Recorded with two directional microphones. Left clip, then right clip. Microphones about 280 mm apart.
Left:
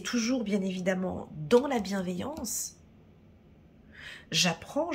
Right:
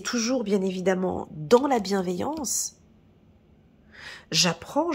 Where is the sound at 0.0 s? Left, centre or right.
Centre.